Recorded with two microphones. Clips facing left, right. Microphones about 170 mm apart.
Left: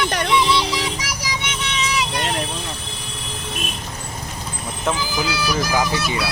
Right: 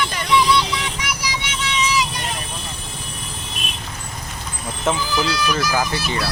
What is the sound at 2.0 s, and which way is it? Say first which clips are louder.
Vehicle: left 2 dB; 65° left (ahead or behind).